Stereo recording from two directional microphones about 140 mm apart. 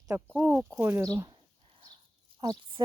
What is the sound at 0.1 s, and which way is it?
Speech, 15° right (ahead or behind).